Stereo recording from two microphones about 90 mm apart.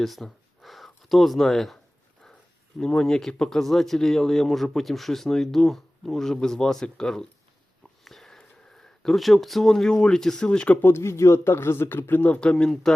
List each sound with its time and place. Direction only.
0.0 s a sound: centre (ahead or behind)
2.7 s speech: 5° left (ahead or behind)
10.8 s speech: 30° left (ahead or behind); by 12.9 s 5° left (ahead or behind)